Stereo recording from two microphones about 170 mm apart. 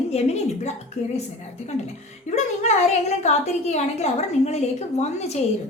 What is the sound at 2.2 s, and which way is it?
A child's voice, 45° left (ahead or behind).